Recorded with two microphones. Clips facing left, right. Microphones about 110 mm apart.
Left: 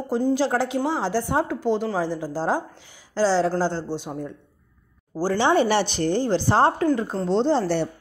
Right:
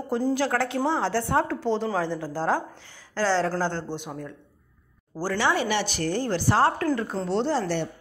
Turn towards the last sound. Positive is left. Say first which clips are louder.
# left 4 dB
turn(degrees=30)  # may be behind; listen again after turning